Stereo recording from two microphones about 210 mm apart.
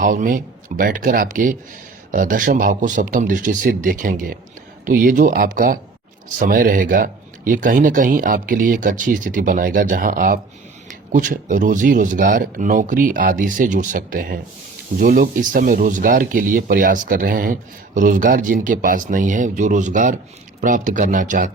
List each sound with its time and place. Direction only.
0.0 s speech: 40° right (ahead or behind)